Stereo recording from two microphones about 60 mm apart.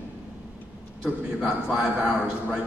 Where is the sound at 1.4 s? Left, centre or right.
Centre.